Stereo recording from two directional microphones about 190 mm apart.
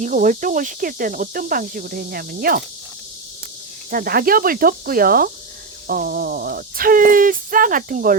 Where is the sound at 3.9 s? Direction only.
50° right (ahead or behind).